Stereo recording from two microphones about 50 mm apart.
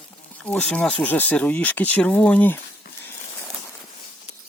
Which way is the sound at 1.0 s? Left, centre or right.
Left.